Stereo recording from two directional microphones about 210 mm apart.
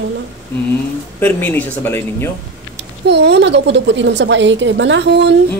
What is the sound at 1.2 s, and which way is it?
Speech, 10° left (ahead or behind).